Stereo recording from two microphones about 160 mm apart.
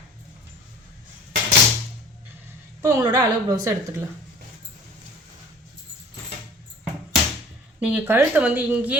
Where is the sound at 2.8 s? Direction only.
20° right (ahead or behind).